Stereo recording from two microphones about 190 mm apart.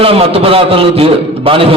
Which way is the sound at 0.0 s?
30° right (ahead or behind).